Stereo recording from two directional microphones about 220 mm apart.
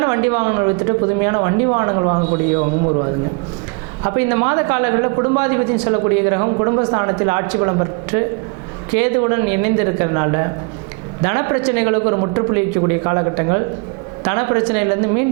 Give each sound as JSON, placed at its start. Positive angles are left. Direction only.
{"t": 0.0, "sound": "speech", "side_deg": -20}
{"t": 9.2, "sound": "a woman's voice", "side_deg": -20}